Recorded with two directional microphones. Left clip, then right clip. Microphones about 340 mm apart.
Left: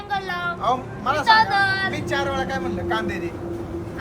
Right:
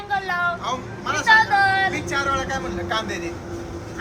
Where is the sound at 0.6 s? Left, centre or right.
Left.